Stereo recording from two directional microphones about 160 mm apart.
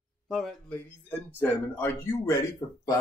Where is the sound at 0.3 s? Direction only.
Centre (ahead or behind).